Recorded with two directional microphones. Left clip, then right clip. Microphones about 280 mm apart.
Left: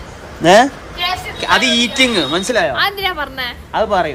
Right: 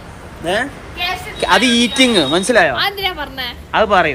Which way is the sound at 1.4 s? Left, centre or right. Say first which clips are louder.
Right 1 dB; centre.